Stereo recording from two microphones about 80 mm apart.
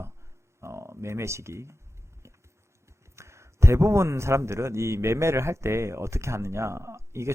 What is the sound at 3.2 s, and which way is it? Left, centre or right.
A man's voice, right.